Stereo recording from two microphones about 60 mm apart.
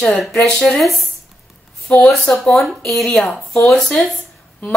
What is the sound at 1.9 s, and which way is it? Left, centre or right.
Speech, left.